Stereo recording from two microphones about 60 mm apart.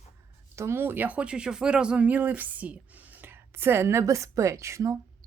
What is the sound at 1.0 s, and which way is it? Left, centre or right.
A woman's voice, right.